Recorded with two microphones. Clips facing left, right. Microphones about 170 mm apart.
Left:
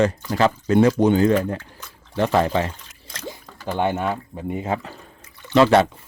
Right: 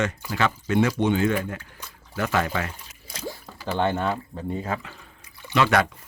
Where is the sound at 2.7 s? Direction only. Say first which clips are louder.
Even; 10° right (ahead or behind).